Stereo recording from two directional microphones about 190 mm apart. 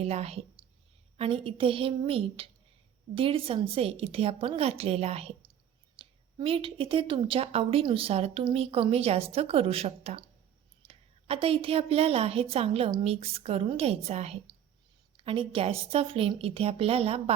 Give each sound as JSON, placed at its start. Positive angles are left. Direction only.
{"t": 0.0, "sound": "a woman's voice", "side_deg": -35}